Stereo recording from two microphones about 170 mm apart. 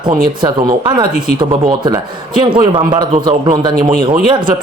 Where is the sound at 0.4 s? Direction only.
25° right (ahead or behind).